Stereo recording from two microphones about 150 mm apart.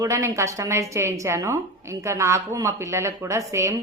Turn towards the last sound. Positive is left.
turn(degrees=-20)  # may be behind; listen again after turning